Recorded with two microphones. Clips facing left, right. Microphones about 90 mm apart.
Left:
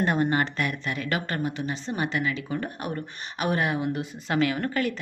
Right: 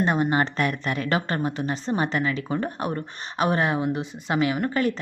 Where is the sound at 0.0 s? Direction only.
20° right (ahead or behind).